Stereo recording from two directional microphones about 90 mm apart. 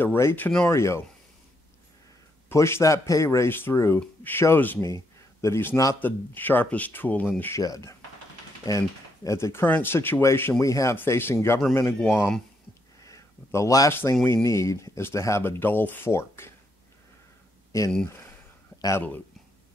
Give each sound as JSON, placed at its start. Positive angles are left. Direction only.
{"t": 0.0, "sound": "speech", "side_deg": 25}
{"t": 2.5, "sound": "speech", "side_deg": 30}
{"t": 7.5, "sound": "speech", "side_deg": 35}
{"t": 13.0, "sound": "a sound", "side_deg": 35}
{"t": 14.2, "sound": "speech", "side_deg": 30}
{"t": 18.9, "sound": "speech", "side_deg": 20}